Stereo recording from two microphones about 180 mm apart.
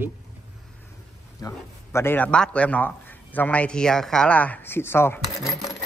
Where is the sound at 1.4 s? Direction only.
15° left (ahead or behind).